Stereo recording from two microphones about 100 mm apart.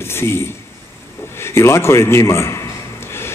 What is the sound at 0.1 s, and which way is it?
Speech, 25° left (ahead or behind).